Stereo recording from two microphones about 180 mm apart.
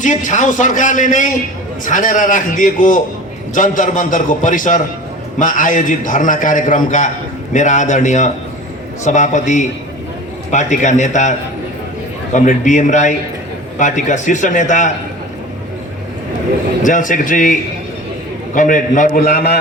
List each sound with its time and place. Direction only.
0.0 s a man's voice: 45° left (ahead or behind)
16.8 s a man's voice: 45° left (ahead or behind)